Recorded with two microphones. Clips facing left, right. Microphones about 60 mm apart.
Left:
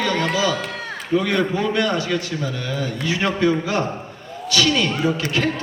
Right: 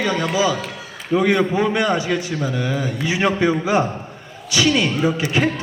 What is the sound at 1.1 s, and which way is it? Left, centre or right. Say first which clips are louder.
A man's voice: right 3 dB; centre.